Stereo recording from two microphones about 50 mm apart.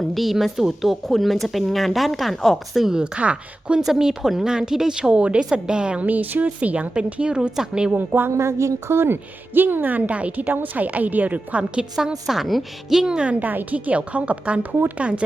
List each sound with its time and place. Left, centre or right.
0.1 s a woman's voice: centre
3.0 s speech: right
3.8 s speech: centre
6.0 s speech: right; by 7.9 s centre
7.9 s a woman's voice: right
8.3 s a woman's voice: right
9.6 s a woman's voice: right
11.9 s a woman's voice: centre
13.0 s speech: centre
13.4 s speech: right